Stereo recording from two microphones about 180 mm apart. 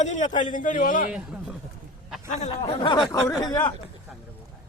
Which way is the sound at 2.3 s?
40° left (ahead or behind).